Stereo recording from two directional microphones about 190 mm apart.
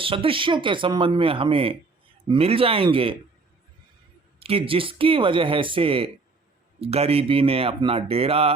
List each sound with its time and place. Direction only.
0.0 s speech: 30° right (ahead or behind)
4.4 s speech: 30° right (ahead or behind)